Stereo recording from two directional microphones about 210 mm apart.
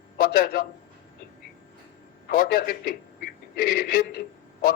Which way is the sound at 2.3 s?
45° left (ahead or behind).